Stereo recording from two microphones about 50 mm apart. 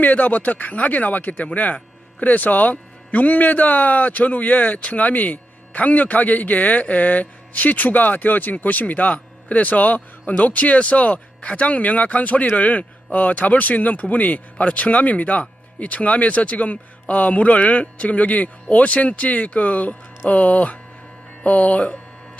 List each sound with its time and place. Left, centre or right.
0.0 s speech: left